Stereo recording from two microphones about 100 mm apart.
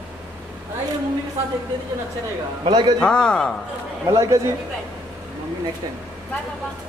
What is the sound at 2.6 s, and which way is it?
Speech, 50° right (ahead or behind).